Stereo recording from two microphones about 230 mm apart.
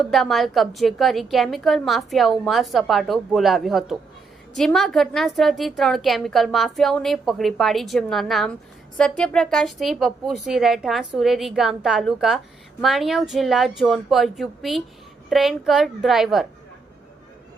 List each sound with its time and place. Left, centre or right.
0.1 s a woman's voice: centre